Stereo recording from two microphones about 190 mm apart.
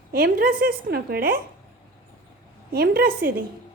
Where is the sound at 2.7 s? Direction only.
55° right (ahead or behind).